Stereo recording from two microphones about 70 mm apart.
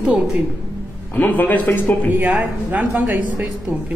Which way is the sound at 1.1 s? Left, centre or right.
Left.